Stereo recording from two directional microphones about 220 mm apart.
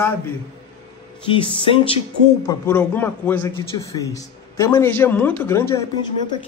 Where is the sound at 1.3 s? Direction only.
25° left (ahead or behind).